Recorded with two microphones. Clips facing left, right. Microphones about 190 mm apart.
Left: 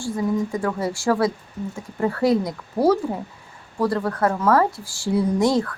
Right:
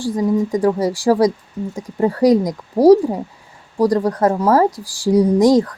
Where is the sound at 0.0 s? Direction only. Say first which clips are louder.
Right 5 dB; 35° right (ahead or behind).